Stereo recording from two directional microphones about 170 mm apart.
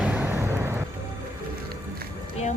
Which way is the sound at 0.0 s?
10° right (ahead or behind).